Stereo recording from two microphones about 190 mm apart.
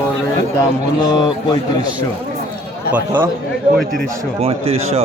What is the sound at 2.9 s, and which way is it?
Speech, 10° right (ahead or behind).